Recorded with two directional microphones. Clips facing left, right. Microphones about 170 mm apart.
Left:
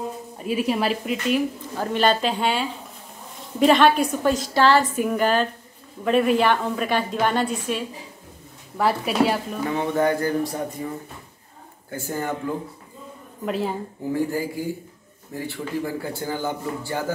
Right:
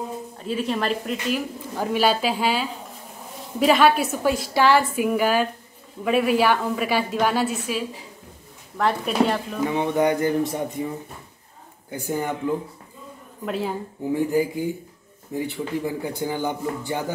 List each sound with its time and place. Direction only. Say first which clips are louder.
0.4 s speech: left 2 dB; 10° left (ahead or behind)
1.8 s a woman's voice: even; 5° right (ahead or behind)
9.7 s speech: even; 15° right (ahead or behind)
11.9 s a man's voice: right 1 dB; 15° right (ahead or behind)
13.5 s a woman's voice: left 1 dB; centre (ahead or behind)
14.1 s a man's voice: right 3 dB; 20° right (ahead or behind)